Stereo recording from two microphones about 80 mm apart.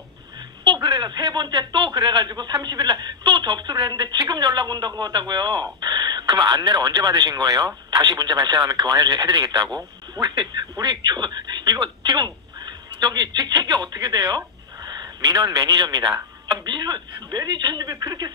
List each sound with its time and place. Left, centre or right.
0.8 s a man's voice: right